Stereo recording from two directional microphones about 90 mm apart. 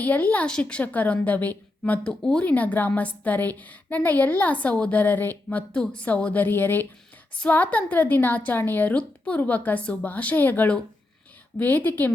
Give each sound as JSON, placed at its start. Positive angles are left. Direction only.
{"t": 0.0, "sound": "a woman's voice", "side_deg": 20}